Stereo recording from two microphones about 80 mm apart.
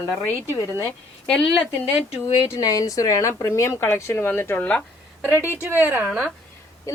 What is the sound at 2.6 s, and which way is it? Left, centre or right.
Speech, left.